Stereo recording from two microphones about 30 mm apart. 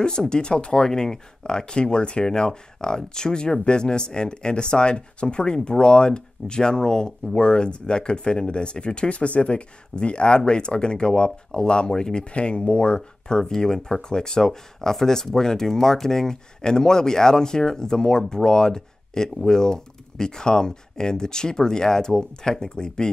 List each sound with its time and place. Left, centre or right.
0.0 s speech: left
0.8 s speech: left
12.3 s speech: left
13.4 s speech: centre